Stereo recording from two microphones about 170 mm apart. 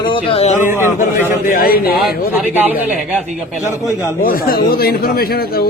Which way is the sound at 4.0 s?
15° left (ahead or behind).